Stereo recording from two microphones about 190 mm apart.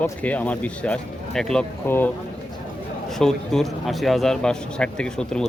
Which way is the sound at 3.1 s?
Centre (ahead or behind).